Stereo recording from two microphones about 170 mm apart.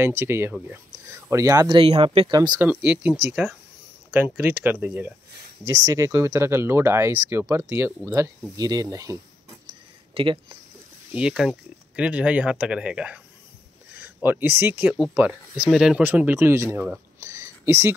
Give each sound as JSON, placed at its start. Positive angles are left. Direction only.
{"t": 0.0, "sound": "speech", "side_deg": -15}
{"t": 1.8, "sound": "speech", "side_deg": -30}
{"t": 2.6, "sound": "speech", "side_deg": -5}
{"t": 10.1, "sound": "speech", "side_deg": -30}
{"t": 11.1, "sound": "speech", "side_deg": -5}
{"t": 13.9, "sound": "a sound", "side_deg": -10}
{"t": 14.6, "sound": "speech", "side_deg": -10}